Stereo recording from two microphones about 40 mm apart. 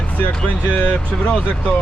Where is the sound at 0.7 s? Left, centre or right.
Left.